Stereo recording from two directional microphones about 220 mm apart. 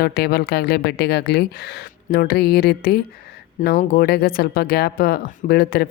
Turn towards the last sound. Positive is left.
turn(degrees=45)  # may be behind; listen again after turning